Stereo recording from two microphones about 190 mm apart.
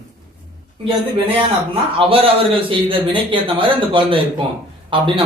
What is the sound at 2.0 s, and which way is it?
A man's voice, 30° right (ahead or behind).